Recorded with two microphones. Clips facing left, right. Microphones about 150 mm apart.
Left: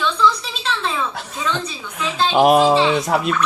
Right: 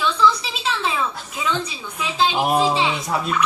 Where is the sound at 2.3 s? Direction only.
85° left.